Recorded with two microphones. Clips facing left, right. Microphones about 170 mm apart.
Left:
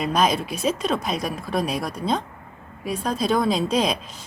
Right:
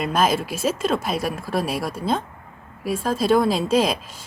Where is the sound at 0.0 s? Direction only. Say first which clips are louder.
Right 1 dB; 5° right (ahead or behind).